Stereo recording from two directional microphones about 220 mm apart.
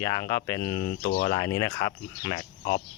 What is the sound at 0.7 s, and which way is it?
Speech, 45° left (ahead or behind).